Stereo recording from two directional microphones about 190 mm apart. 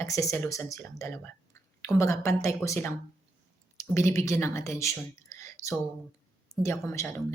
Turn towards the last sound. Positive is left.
turn(degrees=15)  # may be behind; listen again after turning